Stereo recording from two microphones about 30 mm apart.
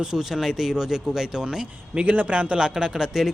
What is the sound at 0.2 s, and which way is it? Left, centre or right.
Speech, centre.